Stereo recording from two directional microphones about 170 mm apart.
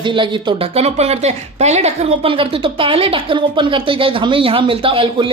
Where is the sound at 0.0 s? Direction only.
30° right (ahead or behind).